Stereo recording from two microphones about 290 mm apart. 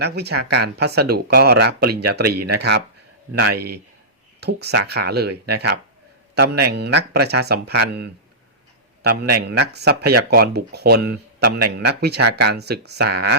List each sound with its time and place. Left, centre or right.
0.0 s speech: right